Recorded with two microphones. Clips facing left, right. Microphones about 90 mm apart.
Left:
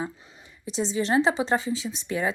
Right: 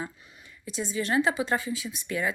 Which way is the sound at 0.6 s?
25° left (ahead or behind).